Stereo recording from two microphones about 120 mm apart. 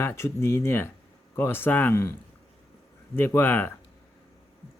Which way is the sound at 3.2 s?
20° left (ahead or behind).